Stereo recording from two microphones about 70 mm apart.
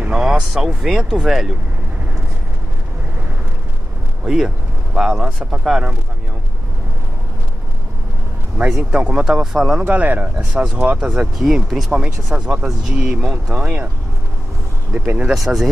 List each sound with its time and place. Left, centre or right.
0.1 s vehicle: centre
1.1 s speech: centre
4.2 s speech: centre
8.5 s speech: centre
9.8 s speech: right
10.5 s speech: centre
15.0 s speech: centre
15.3 s speech: centre